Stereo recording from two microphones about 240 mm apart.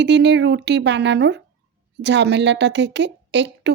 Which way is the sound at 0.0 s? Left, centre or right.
Right.